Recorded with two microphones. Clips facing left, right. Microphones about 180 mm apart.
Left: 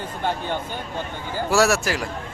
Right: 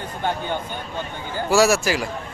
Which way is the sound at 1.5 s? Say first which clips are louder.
Right 2 dB; centre (ahead or behind).